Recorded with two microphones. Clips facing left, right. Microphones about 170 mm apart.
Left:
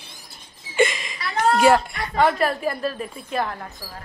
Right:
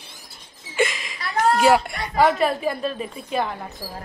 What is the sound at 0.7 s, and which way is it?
Whimper, 5° right (ahead or behind).